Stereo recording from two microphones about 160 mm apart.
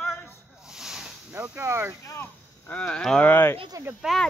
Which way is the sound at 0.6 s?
5° right (ahead or behind).